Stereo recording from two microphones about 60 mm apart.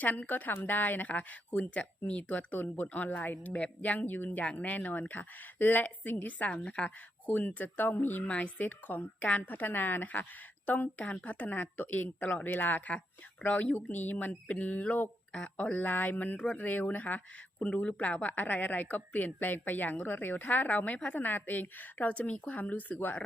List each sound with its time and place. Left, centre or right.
0.0 s speech: left
15.3 s speech: centre